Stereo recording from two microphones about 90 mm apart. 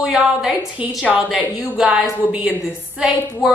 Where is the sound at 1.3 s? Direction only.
15° right (ahead or behind).